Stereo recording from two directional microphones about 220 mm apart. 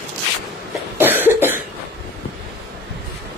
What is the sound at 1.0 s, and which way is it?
Cough, 10° right (ahead or behind).